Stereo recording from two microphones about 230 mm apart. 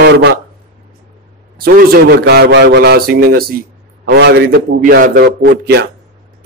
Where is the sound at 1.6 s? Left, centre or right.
Right.